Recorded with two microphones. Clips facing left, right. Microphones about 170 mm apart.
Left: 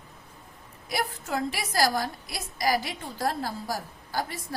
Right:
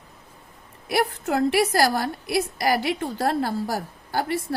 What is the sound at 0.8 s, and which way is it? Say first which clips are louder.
A woman's voice: right 8 dB; 60° right (ahead or behind).